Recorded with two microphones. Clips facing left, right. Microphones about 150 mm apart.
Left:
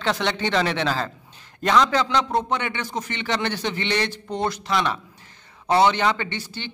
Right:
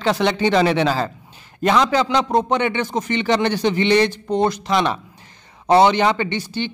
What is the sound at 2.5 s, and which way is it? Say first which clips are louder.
A man's voice: right 7 dB; 20° right (ahead or behind).